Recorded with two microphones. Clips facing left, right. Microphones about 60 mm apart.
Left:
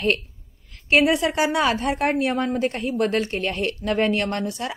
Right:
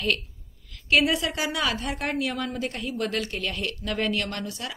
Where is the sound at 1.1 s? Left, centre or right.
Left.